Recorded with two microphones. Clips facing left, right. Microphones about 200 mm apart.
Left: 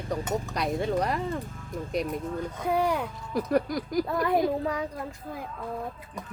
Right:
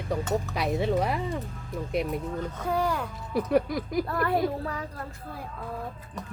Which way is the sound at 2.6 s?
15° left (ahead or behind).